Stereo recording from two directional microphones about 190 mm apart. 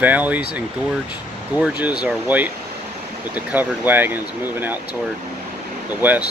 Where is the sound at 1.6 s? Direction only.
5° right (ahead or behind).